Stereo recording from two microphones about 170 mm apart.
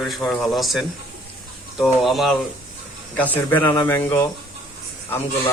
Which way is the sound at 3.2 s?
10° left (ahead or behind).